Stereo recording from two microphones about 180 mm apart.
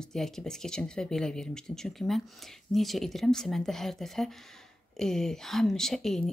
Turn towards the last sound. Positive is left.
turn(degrees=0)  # may be behind; listen again after turning